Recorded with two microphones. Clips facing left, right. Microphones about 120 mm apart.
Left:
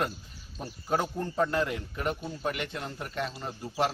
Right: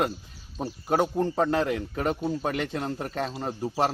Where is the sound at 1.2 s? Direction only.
90° right.